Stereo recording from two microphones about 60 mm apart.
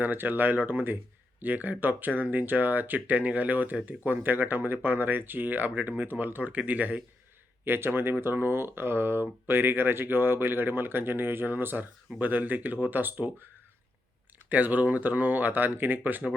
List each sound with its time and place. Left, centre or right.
0.0 s speech: right
7.6 s speech: right
14.5 s speech: right